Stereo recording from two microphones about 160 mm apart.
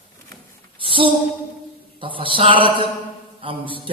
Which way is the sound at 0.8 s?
35° right (ahead or behind).